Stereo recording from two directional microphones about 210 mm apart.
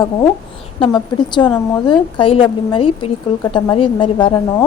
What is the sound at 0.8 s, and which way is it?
Speech, 20° left (ahead or behind).